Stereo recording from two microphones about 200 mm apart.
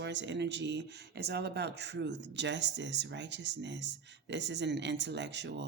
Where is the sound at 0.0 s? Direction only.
60° right (ahead or behind).